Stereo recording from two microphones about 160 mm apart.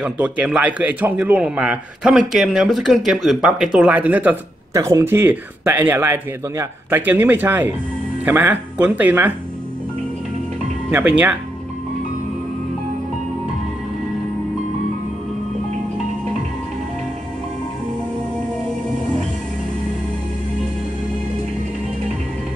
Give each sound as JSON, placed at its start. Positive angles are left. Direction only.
{"t": 0.0, "sound": "a man's voice", "side_deg": -5}
{"t": 10.9, "sound": "speech", "side_deg": -10}